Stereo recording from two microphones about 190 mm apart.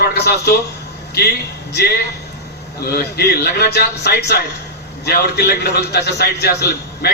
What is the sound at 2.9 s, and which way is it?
A man's voice, 55° left (ahead or behind).